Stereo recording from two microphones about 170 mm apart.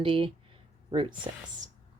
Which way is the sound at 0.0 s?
30° right (ahead or behind).